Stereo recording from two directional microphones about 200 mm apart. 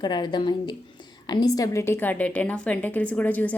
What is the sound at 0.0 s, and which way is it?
A woman's voice, 20° left (ahead or behind).